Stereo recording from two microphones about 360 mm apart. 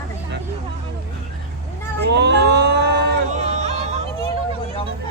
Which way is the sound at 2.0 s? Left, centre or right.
Right.